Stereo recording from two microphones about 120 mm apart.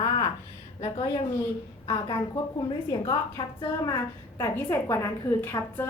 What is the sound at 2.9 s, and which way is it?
A woman's voice, 35° left (ahead or behind).